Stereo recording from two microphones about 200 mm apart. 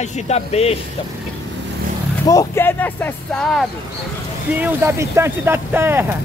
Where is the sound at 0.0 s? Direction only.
30° left (ahead or behind).